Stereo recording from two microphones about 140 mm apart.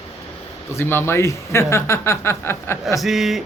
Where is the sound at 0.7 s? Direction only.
15° left (ahead or behind).